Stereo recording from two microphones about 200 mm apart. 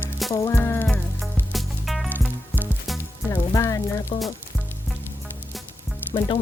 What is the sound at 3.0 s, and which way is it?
Music, 10° left (ahead or behind).